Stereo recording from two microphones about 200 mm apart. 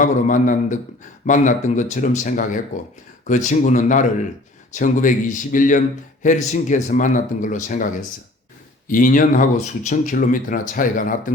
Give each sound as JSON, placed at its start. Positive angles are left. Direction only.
{"t": 0.0, "sound": "speech", "side_deg": 40}